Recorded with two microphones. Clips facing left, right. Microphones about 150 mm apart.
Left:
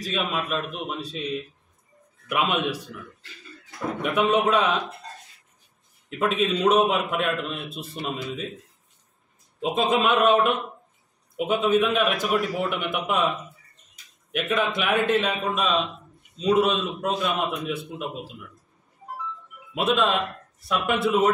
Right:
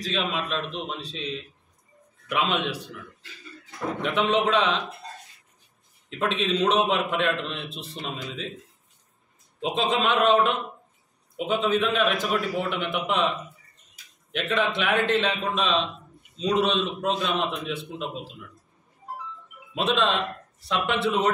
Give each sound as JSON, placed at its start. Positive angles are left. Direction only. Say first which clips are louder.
{"t": 0.0, "sound": "a man's voice", "louder": "left 1 dB", "side_deg": 5}
{"t": 2.2, "sound": "a man's voice", "louder": "left 1 dB", "side_deg": 10}
{"t": 4.0, "sound": "a man's voice", "louder": "left 2 dB", "side_deg": 10}
{"t": 6.0, "sound": "a man's voice", "louder": "left 3 dB", "side_deg": 5}
{"t": 9.6, "sound": "a man's voice", "louder": "left 2 dB", "side_deg": 5}
{"t": 14.3, "sound": "a man's voice", "louder": "left 1 dB", "side_deg": 10}
{"t": 19.7, "sound": "a man's voice", "louder": "left 1 dB", "side_deg": 10}
{"t": 20.9, "sound": "a man's voice", "louder": "left 3 dB", "side_deg": 45}